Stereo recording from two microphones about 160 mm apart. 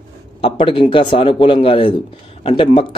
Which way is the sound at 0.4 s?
30° left (ahead or behind).